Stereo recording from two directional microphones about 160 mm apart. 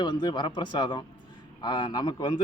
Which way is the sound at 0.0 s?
25° left (ahead or behind).